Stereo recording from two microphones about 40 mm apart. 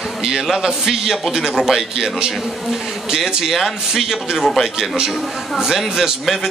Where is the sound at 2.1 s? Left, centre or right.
Centre.